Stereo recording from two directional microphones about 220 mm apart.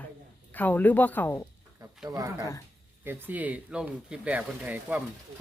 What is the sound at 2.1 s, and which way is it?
Speech, 15° right (ahead or behind).